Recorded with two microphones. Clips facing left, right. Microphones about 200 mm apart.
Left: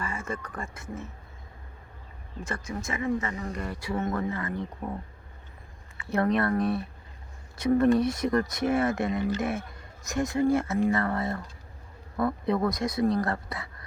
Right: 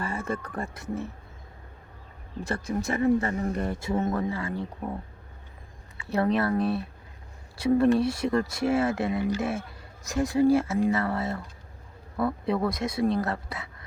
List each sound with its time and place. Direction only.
0.0 s speech: 35° right (ahead or behind)
2.4 s speech: 35° right (ahead or behind); by 5.0 s 5° right (ahead or behind)
6.1 s speech: 5° right (ahead or behind)
7.9 s speech: 30° right (ahead or behind)
9.1 s speech: 10° right (ahead or behind)
9.4 s speech: 30° right (ahead or behind)
10.8 s speech: 10° right (ahead or behind)
12.7 s speech: 25° right (ahead or behind)
13.1 s speech: 5° right (ahead or behind)